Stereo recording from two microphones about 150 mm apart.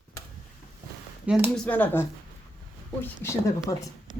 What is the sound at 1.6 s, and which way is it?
A woman's voice, 10° left (ahead or behind).